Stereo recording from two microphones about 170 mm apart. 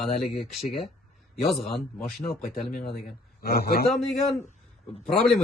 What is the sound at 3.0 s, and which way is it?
Speech, 65° left (ahead or behind).